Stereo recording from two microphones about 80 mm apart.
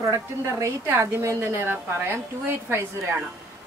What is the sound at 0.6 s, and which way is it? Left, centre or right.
A woman's voice, right.